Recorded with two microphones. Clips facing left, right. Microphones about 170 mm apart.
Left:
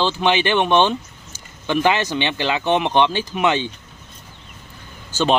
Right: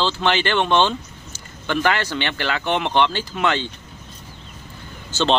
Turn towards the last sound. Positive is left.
turn(degrees=10)  # may be behind; listen again after turning